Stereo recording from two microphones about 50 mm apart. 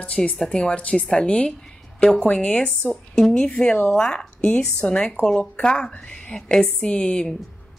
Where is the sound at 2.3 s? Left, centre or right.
Left.